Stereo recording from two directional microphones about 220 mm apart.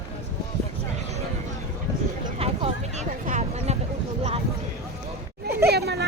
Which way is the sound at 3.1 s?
35° right (ahead or behind).